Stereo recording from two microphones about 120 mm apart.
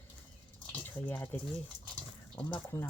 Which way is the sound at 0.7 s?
15° left (ahead or behind).